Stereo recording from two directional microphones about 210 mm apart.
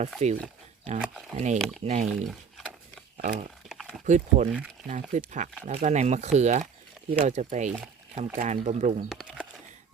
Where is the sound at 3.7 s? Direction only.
Centre (ahead or behind).